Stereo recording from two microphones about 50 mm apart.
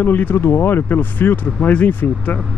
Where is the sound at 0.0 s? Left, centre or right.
Left.